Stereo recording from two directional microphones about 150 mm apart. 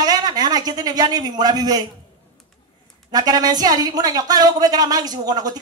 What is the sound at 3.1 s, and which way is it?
Speech, 25° right (ahead or behind).